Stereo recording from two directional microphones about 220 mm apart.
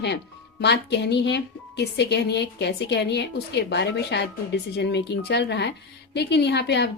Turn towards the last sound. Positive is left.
turn(degrees=50)  # may be behind; listen again after turning